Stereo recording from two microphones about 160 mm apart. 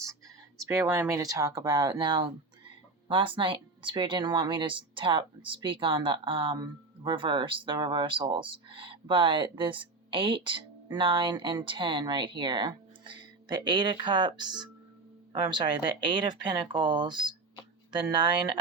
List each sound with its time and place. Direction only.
0.6 s a woman's voice: 20° right (ahead or behind)